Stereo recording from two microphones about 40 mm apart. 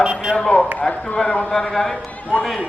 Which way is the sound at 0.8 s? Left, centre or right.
Left.